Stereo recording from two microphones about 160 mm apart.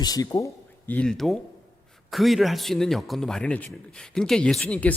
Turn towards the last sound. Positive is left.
turn(degrees=10)  # may be behind; listen again after turning